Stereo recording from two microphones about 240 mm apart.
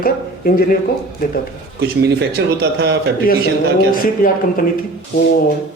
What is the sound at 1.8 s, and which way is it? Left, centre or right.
A man's voice, right.